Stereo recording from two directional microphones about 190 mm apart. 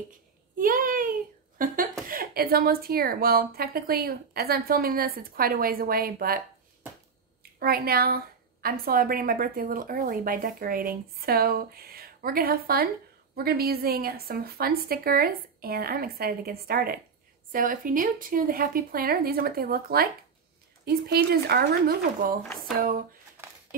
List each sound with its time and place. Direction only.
0.6 s a sound: 45° right (ahead or behind)
2.0 s a woman's voice: 50° right (ahead or behind)
7.5 s a woman's voice: 55° right (ahead or behind)